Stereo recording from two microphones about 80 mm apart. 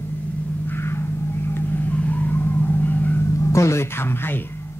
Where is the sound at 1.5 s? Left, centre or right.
Left.